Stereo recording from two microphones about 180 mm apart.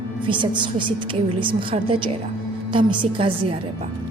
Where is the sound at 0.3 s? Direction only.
25° right (ahead or behind).